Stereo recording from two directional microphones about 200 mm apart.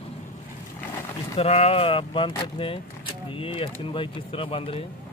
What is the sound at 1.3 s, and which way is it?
Speech, 30° left (ahead or behind).